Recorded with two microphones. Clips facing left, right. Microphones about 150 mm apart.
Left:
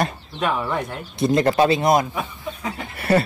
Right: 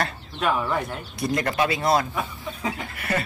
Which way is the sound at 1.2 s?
25° left (ahead or behind).